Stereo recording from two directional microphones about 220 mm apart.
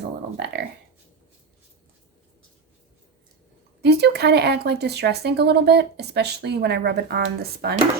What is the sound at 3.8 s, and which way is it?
Speech, 50° right (ahead or behind).